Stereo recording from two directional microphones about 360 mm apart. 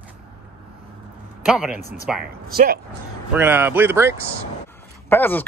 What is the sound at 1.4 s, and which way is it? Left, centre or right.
Speech, centre.